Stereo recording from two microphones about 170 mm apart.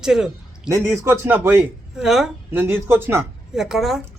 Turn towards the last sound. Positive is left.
turn(degrees=0)  # may be behind; listen again after turning